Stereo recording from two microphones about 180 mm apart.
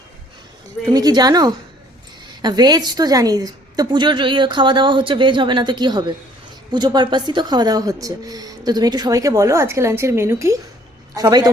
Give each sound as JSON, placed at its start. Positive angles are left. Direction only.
{"t": 0.9, "sound": "a woman's voice", "side_deg": -20}